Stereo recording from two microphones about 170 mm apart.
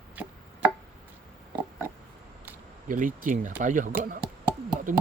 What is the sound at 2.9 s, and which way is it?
Speech, 50° right (ahead or behind).